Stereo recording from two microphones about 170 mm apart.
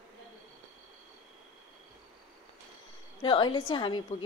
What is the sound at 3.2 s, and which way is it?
Speech, 30° left (ahead or behind).